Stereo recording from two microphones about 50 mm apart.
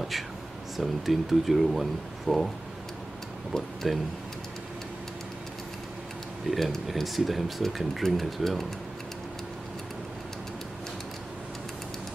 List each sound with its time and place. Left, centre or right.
0.7 s speech: centre
3.5 s speech: centre
6.5 s speech: centre